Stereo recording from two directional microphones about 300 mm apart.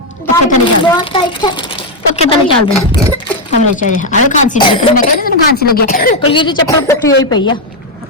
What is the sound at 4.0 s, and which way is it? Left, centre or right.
A child's voice, left.